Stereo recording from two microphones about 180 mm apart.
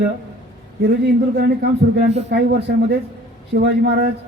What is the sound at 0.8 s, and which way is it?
A man's voice, 70° right (ahead or behind).